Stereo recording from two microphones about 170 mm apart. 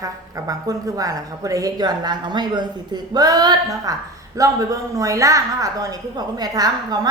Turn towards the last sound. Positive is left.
turn(degrees=-25)  # may be behind; listen again after turning